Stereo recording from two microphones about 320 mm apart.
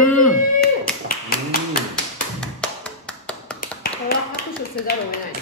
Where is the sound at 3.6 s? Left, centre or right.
Left.